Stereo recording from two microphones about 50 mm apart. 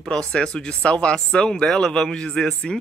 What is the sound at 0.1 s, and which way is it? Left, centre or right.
Speech, centre.